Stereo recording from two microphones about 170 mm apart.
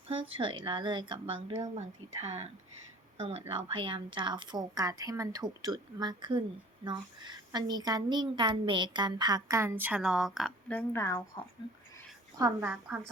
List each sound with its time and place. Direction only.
0.1 s a woman's voice: 35° right (ahead or behind); by 10.5 s centre (ahead or behind)
10.7 s speech: 10° left (ahead or behind)
12.5 s a woman's voice: 10° right (ahead or behind)